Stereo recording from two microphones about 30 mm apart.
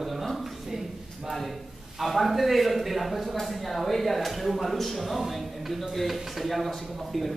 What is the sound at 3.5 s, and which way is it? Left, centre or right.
Speech, centre.